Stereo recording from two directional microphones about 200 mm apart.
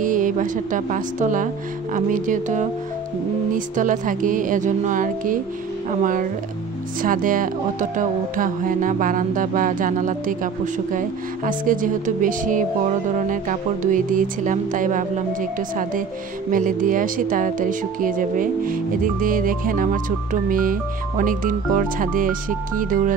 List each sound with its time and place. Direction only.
0.0 s speech: 40° right (ahead or behind)